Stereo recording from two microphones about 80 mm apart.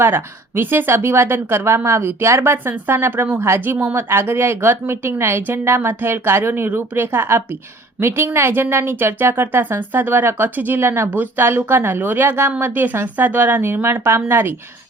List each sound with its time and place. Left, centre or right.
0.0 s a woman's voice: right